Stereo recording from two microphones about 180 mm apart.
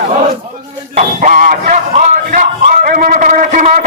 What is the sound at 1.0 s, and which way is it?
Music, 50° right (ahead or behind).